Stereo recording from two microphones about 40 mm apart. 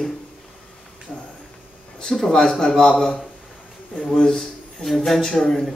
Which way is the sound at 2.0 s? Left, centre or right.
Centre.